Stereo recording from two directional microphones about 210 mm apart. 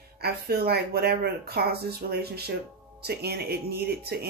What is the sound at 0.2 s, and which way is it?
Speech, 50° right (ahead or behind).